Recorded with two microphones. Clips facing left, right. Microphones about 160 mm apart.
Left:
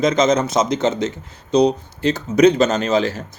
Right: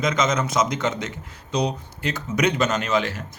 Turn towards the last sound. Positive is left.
turn(degrees=35)  # may be behind; listen again after turning